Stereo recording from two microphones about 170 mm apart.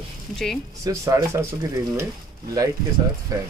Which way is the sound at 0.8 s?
15° right (ahead or behind).